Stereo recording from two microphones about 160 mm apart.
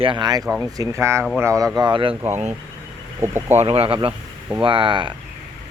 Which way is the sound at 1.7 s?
30° right (ahead or behind).